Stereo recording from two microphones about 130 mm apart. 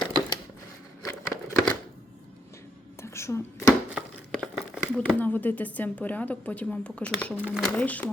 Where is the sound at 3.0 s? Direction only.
20° left (ahead or behind).